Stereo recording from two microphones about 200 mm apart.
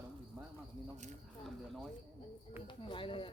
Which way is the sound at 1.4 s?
Centre (ahead or behind).